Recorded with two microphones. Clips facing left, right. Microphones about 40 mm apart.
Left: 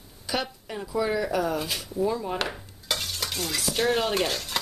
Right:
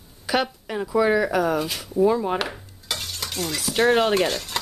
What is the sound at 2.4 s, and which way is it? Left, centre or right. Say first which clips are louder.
Cutlery: right 2 dB; centre.